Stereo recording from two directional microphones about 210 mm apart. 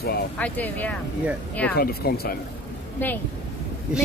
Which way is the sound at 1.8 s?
45° left (ahead or behind).